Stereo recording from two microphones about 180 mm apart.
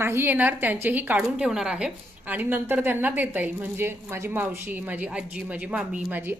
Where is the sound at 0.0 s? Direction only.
15° right (ahead or behind).